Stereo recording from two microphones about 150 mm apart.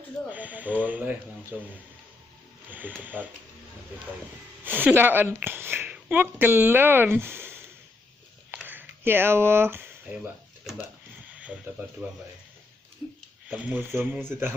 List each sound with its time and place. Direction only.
0.3 s speech: 10° right (ahead or behind)
2.6 s speech: 10° right (ahead or behind)
4.6 s speech: 10° right (ahead or behind)
8.6 s speech: 10° right (ahead or behind)
11.3 s speech: 10° right (ahead or behind)
13.5 s speech: 10° right (ahead or behind)